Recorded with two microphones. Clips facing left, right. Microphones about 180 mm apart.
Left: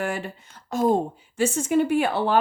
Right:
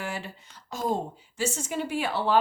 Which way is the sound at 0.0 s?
55° left (ahead or behind).